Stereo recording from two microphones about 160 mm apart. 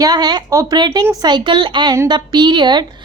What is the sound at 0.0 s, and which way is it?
A woman's voice, 25° right (ahead or behind).